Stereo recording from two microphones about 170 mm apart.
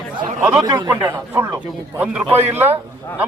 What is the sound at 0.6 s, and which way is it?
Speech, 25° right (ahead or behind).